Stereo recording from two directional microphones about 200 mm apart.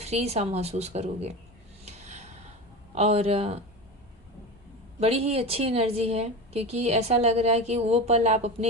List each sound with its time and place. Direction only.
0.0 s a woman's voice: 30° right (ahead or behind)
1.8 s gasp: 35° right (ahead or behind)
2.9 s a woman's voice: 30° right (ahead or behind)
4.9 s a woman's voice: 30° right (ahead or behind)